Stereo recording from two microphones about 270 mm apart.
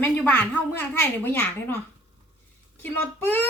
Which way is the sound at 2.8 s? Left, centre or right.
Centre.